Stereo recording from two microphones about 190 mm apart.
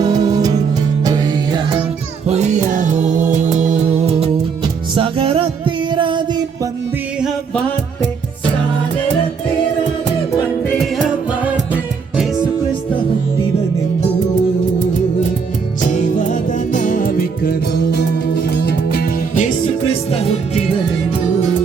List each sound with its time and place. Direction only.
0.0 s music: 20° right (ahead or behind)
2.2 s music: 35° right (ahead or behind)
15.9 s music: 40° left (ahead or behind)
19.9 s music: 30° left (ahead or behind)